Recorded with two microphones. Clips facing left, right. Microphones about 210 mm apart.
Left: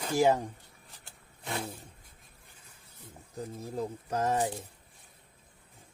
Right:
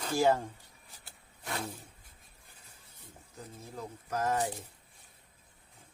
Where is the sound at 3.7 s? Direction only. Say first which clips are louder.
Left 4 dB; 30° left (ahead or behind).